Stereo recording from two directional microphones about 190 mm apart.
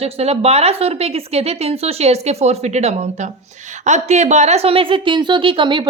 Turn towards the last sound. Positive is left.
turn(degrees=-25)  # may be behind; listen again after turning